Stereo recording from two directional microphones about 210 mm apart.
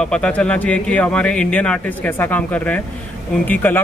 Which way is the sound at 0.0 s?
5° left (ahead or behind).